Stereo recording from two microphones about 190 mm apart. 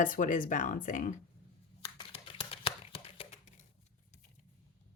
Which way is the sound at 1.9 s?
30° left (ahead or behind).